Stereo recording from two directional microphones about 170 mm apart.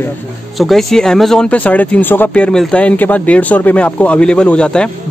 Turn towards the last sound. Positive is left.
turn(degrees=5)  # may be behind; listen again after turning